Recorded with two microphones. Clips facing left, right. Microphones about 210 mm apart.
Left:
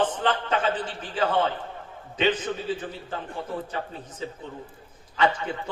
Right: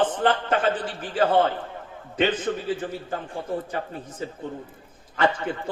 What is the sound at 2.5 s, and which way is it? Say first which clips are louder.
Speech: right 4 dB; 50° right (ahead or behind).